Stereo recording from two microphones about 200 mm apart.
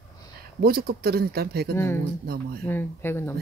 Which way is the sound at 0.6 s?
50° right (ahead or behind).